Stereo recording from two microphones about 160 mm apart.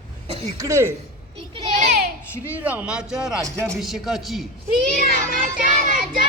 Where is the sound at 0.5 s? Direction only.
20° right (ahead or behind).